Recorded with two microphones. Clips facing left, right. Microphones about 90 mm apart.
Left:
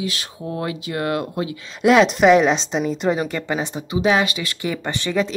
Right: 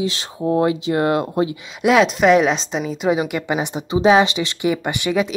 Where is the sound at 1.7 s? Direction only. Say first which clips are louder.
Left 2 dB; 5° right (ahead or behind).